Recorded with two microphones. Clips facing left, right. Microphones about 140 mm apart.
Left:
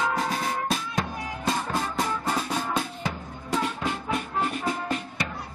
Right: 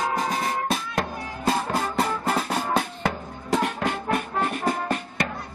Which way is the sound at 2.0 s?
65° right (ahead or behind).